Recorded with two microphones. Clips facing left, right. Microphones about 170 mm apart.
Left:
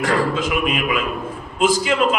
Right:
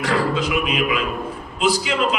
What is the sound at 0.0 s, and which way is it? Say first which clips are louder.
A man's voice: left 1 dB; 45° left (ahead or behind).